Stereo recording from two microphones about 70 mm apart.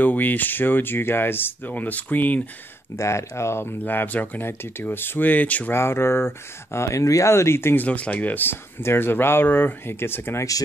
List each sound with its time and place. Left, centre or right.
0.0 s speech: left
3.0 s speech: left
3.8 s speech: left
5.7 s speech: left
7.8 s speech: left